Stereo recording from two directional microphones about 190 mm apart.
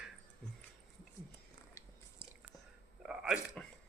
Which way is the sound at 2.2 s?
5° right (ahead or behind).